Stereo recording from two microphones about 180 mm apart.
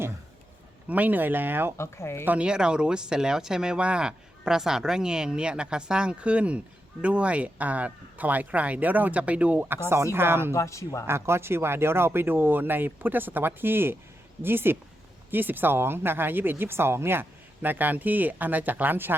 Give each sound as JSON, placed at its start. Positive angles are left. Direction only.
{"t": 0.9, "sound": "speech", "side_deg": -10}
{"t": 1.8, "sound": "speech", "side_deg": 15}
{"t": 2.2, "sound": "speech", "side_deg": -5}
{"t": 10.5, "sound": "speech", "side_deg": 15}
{"t": 11.0, "sound": "speech", "side_deg": -15}